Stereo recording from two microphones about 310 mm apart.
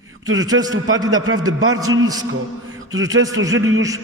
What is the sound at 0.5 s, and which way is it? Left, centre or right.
Speech, right.